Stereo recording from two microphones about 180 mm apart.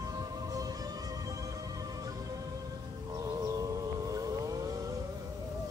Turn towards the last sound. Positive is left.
turn(degrees=-20)  # may be behind; listen again after turning